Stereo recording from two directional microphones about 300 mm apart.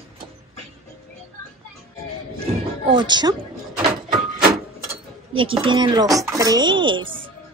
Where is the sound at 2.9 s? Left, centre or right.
Centre.